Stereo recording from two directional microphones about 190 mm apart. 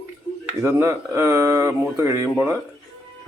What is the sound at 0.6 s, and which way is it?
Speech, 15° right (ahead or behind).